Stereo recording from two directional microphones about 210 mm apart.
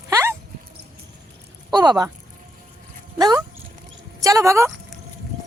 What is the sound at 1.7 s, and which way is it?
Speech, 20° right (ahead or behind).